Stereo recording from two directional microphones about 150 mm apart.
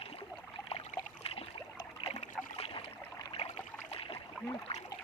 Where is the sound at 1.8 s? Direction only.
30° left (ahead or behind).